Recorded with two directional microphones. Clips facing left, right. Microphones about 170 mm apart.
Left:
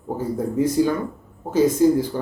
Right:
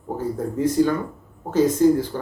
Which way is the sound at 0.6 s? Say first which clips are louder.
Even; 10° left (ahead or behind).